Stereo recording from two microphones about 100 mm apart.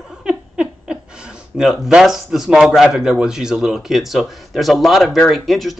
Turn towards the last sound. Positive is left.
turn(degrees=0)  # may be behind; listen again after turning